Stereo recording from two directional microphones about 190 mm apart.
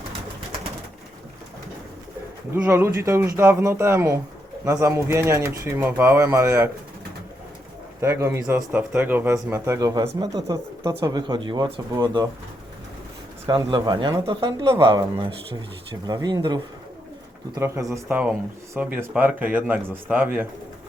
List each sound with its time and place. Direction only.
2.5 s a man's voice: 10° right (ahead or behind)
8.0 s a man's voice: 15° right (ahead or behind)
13.5 s a man's voice: 25° right (ahead or behind)